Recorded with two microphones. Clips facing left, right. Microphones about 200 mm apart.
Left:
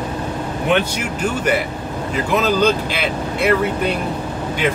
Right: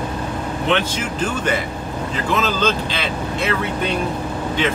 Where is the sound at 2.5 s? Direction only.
10° left (ahead or behind).